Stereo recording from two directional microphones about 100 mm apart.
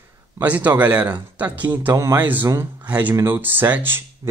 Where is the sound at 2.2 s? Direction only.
20° right (ahead or behind).